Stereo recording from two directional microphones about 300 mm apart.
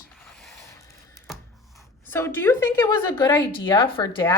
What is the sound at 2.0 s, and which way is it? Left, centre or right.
A woman's voice, centre.